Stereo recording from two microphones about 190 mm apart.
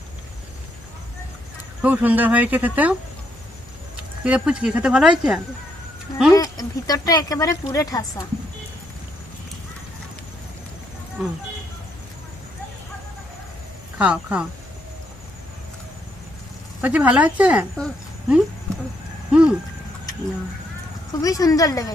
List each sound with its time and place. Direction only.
1.8 s speech: 10° right (ahead or behind)
4.2 s speech: 5° right (ahead or behind)
6.3 s speech: 20° left (ahead or behind)
14.0 s speech: 5° right (ahead or behind)
16.8 s speech: 5° right (ahead or behind)
19.3 s a sound: 5° right (ahead or behind)
21.1 s speech: 20° left (ahead or behind)